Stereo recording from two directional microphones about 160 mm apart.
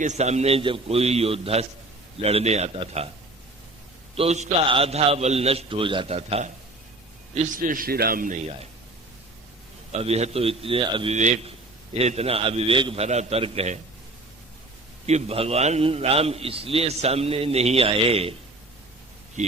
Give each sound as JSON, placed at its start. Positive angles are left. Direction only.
{"t": 0.0, "sound": "a man's voice", "side_deg": -45}
{"t": 4.1, "sound": "a man's voice", "side_deg": -40}
{"t": 7.3, "sound": "a man's voice", "side_deg": -60}
{"t": 9.9, "sound": "a man's voice", "side_deg": -40}
{"t": 15.0, "sound": "a man's voice", "side_deg": -40}